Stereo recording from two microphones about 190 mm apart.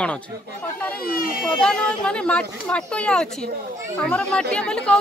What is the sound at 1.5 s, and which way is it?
Speech, 5° left (ahead or behind).